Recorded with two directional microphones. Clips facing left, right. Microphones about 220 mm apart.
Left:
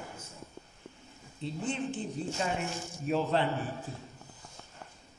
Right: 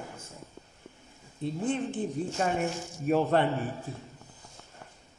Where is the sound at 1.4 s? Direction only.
50° right (ahead or behind).